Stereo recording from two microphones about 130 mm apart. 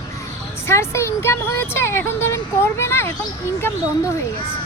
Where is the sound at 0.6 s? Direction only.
20° left (ahead or behind).